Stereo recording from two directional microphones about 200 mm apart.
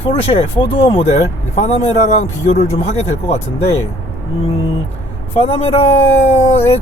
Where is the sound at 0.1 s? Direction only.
30° left (ahead or behind).